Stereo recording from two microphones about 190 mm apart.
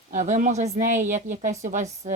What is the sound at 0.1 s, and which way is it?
A woman's voice, 40° right (ahead or behind).